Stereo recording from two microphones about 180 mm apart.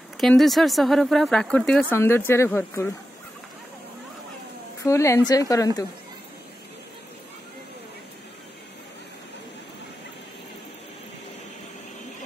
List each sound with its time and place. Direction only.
0.2 s speech: centre (ahead or behind)
4.8 s speech: 15° left (ahead or behind)